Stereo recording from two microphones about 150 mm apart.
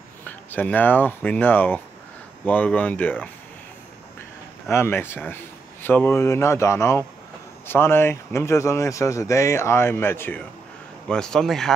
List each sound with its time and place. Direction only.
0.2 s speech: 10° left (ahead or behind)
4.6 s speech: 15° left (ahead or behind)
11.1 s a man's voice: 5° left (ahead or behind)